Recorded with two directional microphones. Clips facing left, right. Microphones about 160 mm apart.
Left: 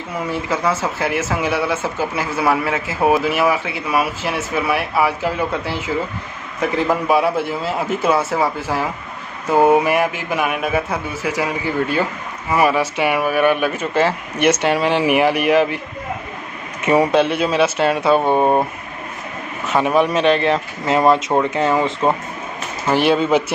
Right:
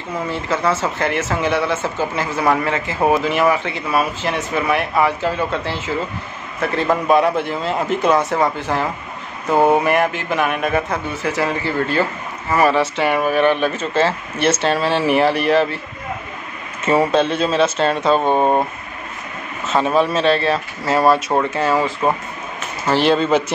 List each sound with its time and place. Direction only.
0.1 s a man's voice: 10° left (ahead or behind)
16.8 s a man's voice: 15° left (ahead or behind)